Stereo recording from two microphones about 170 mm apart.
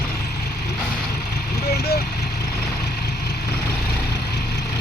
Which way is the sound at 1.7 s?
70° left (ahead or behind).